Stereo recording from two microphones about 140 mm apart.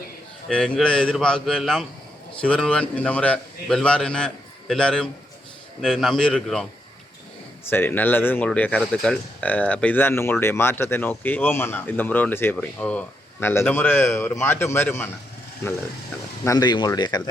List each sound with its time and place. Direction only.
0.4 s speech: 5° left (ahead or behind)
7.7 s speech: 15° left (ahead or behind)
16.4 s speech: 25° left (ahead or behind)